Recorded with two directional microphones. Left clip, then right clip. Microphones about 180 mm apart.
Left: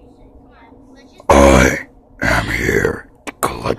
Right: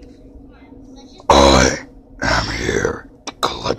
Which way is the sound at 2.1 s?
55° left (ahead or behind).